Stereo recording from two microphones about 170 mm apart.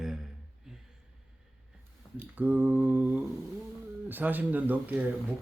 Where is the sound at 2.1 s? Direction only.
10° right (ahead or behind).